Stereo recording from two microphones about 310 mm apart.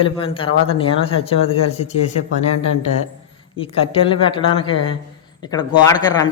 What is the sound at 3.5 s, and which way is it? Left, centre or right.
A man's voice, centre.